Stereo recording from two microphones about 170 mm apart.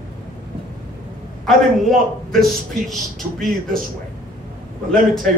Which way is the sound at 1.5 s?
Centre (ahead or behind).